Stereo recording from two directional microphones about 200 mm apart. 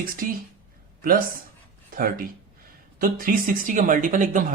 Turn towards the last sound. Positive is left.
turn(degrees=-40)  # may be behind; listen again after turning